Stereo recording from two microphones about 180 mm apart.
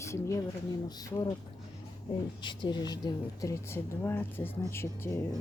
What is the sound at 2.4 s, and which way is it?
Speech, 25° left (ahead or behind).